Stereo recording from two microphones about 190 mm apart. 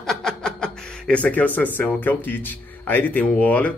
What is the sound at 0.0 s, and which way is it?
Speech, 5° left (ahead or behind).